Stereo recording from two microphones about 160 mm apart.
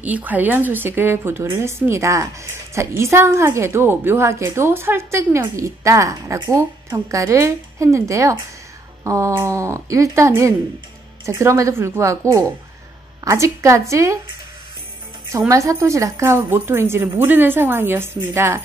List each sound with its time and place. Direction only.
0.0 s a woman's voice: 10° right (ahead or behind)
15.2 s a woman's voice: 20° right (ahead or behind)